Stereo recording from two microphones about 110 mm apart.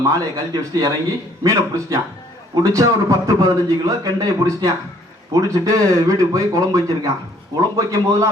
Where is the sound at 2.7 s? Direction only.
30° right (ahead or behind).